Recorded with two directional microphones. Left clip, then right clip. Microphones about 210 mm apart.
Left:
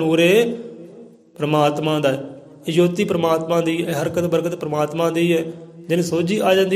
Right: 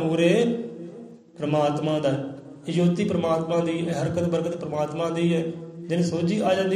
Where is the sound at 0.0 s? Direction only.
50° left (ahead or behind).